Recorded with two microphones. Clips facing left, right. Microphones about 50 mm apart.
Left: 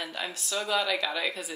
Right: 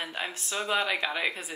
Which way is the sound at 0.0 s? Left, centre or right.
Right.